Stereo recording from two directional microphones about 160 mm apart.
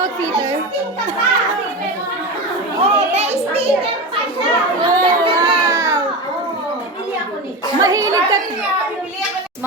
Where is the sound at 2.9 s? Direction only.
40° right (ahead or behind).